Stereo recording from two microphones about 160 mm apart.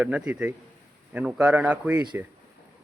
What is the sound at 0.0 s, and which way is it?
A man's voice, 5° right (ahead or behind).